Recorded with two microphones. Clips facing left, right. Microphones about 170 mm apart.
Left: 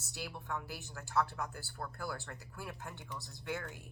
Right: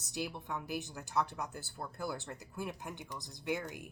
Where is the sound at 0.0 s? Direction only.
15° right (ahead or behind).